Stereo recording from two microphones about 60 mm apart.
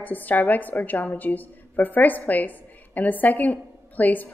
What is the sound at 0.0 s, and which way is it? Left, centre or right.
A woman's voice, left.